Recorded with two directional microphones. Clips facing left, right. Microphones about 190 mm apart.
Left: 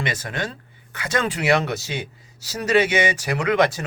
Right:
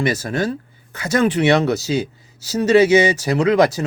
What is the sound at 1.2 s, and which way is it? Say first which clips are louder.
Speech: right 6 dB; 25° right (ahead or behind).